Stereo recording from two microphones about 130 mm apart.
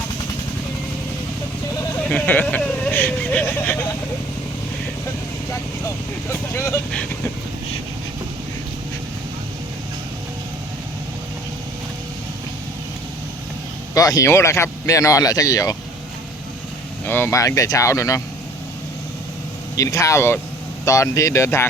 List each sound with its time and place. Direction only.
2.0 s speech: 10° left (ahead or behind)
5.5 s speech: 20° left (ahead or behind)
6.9 s speech: 10° left (ahead or behind)
13.9 s speech: 25° left (ahead or behind)
17.1 s speech: 15° left (ahead or behind)
19.7 s speech: 25° left (ahead or behind)